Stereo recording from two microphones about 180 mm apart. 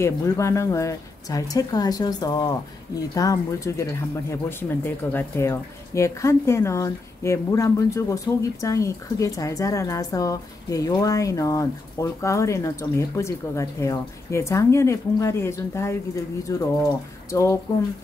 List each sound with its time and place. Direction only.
0.0 s a woman's voice: 15° left (ahead or behind)